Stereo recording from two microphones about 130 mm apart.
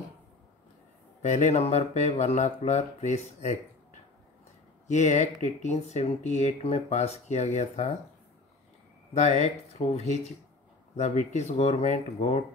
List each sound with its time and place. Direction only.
1.2 s speech: 60° left (ahead or behind)
4.8 s speech: 65° left (ahead or behind)
9.1 s speech: 65° left (ahead or behind)